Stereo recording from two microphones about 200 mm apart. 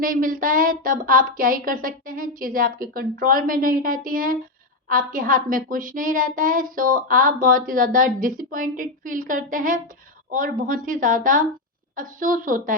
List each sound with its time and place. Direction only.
0.0 s speech: 45° right (ahead or behind)